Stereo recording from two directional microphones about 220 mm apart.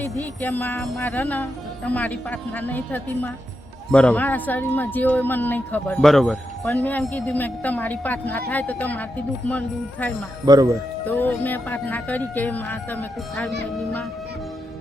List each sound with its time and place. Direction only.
0.2 s speech: 10° left (ahead or behind)
10.4 s speech: 15° right (ahead or behind)
11.0 s speech: 10° left (ahead or behind)
13.7 s music: centre (ahead or behind)